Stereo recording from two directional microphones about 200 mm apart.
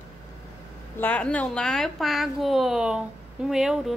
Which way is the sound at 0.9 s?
10° left (ahead or behind).